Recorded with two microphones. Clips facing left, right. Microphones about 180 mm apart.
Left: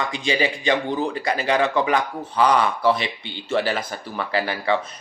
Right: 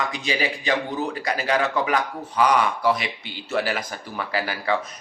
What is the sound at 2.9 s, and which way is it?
Speech, 30° left (ahead or behind).